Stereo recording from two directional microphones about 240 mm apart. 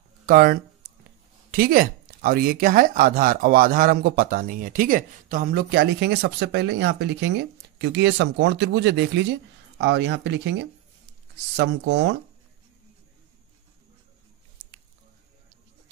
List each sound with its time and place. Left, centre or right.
0.3 s speech: right